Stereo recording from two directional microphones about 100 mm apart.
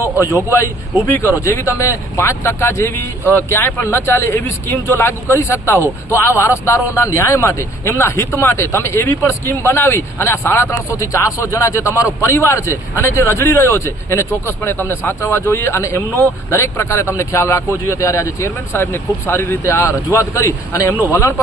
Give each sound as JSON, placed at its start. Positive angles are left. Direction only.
{"t": 0.5, "sound": "a man's voice", "side_deg": 30}